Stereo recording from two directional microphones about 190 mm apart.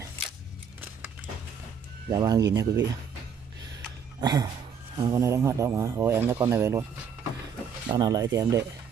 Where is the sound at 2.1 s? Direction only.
20° right (ahead or behind).